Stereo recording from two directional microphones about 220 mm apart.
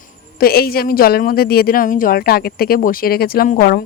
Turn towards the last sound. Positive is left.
turn(degrees=40)  # may be behind; listen again after turning